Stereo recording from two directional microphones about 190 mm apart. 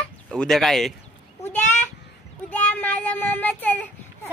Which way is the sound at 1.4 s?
10° left (ahead or behind).